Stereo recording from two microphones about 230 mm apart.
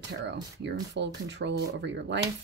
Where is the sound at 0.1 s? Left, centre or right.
Right.